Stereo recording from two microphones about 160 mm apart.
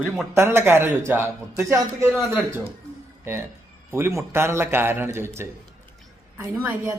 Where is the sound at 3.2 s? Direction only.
15° right (ahead or behind).